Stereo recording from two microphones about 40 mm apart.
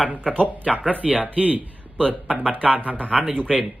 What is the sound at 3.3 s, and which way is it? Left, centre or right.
Speech, left.